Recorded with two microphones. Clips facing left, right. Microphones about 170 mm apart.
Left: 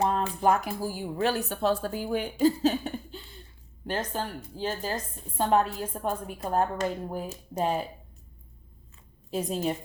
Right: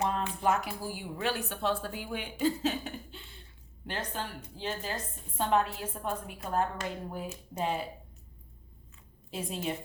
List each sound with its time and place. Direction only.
0.0 s a woman's voice: 40° left (ahead or behind)
9.3 s a woman's voice: 40° left (ahead or behind)